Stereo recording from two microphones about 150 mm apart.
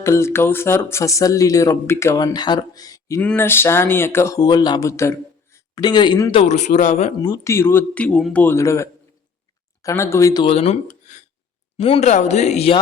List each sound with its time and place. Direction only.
0.0 s speech: 20° left (ahead or behind)
3.2 s speech: 10° left (ahead or behind)
4.4 s a man's voice: 30° left (ahead or behind)
6.3 s speech: 45° left (ahead or behind)
7.2 s speech: 25° left (ahead or behind)
10.4 s speech: 45° left (ahead or behind)
11.8 s speech: 45° left (ahead or behind)